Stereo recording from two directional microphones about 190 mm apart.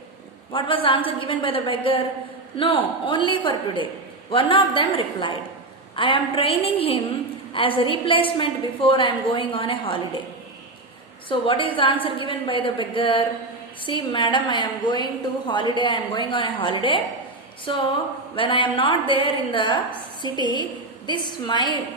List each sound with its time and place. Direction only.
0.5 s a woman's voice: 25° left (ahead or behind)
11.3 s a woman's voice: 25° left (ahead or behind)